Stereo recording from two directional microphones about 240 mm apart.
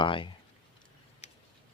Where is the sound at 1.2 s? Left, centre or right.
Left.